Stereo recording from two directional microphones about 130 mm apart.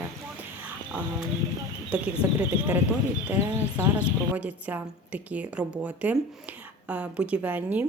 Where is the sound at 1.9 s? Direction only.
10° right (ahead or behind).